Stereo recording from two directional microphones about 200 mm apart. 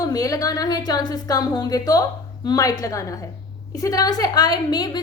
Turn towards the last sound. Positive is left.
turn(degrees=20)  # may be behind; listen again after turning